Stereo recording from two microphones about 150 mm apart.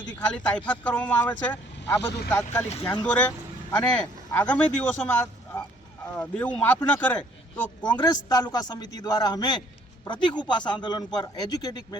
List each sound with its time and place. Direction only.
0.3 s speech: 10° left (ahead or behind)
7.9 s a man's voice: 25° left (ahead or behind)